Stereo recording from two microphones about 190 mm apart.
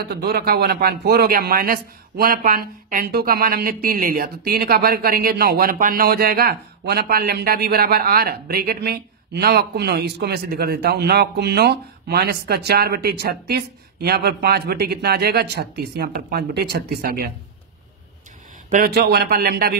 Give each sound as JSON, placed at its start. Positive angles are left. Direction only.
{"t": 0.0, "sound": "a man's voice", "side_deg": -55}
{"t": 18.7, "sound": "a man's voice", "side_deg": -55}